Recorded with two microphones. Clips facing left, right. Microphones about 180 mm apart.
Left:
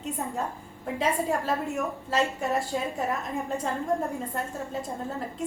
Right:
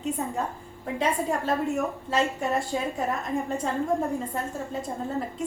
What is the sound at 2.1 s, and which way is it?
A woman's voice, centre (ahead or behind).